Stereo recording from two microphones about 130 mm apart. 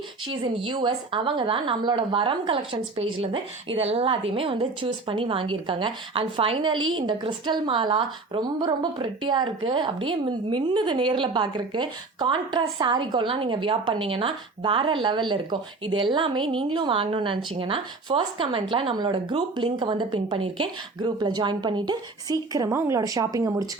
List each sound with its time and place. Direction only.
0.4 s a woman's voice: 35° right (ahead or behind)